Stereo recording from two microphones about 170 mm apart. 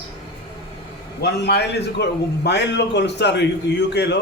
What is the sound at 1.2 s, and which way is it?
A man's voice, 75° left (ahead or behind).